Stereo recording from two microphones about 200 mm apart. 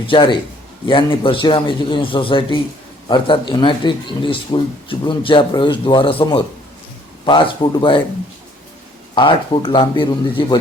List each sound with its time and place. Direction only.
0.1 s speech: 25° left (ahead or behind)
9.1 s speech: 25° left (ahead or behind)